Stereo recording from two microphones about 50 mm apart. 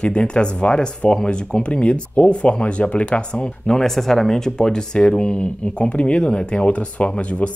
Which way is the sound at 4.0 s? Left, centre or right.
Centre.